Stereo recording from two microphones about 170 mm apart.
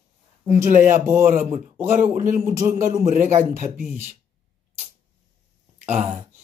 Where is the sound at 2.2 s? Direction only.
55° right (ahead or behind).